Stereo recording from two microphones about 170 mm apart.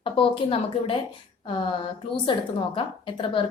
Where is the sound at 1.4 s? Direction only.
30° left (ahead or behind).